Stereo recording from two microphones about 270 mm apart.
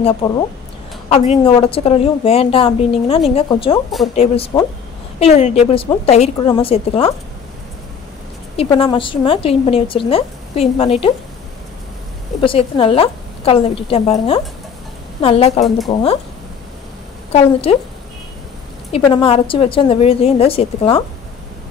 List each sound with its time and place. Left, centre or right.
0.2 s a woman's voice: centre
8.7 s a woman's voice: centre
12.4 s a woman's voice: centre
17.3 s a woman's voice: left
18.9 s a woman's voice: centre